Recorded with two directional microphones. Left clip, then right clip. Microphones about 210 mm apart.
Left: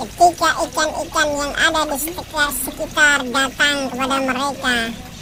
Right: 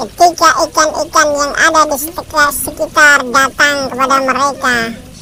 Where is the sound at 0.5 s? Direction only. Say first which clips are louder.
Right 8 dB; 25° right (ahead or behind).